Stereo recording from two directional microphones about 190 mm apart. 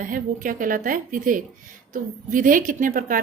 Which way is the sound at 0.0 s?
45° right (ahead or behind).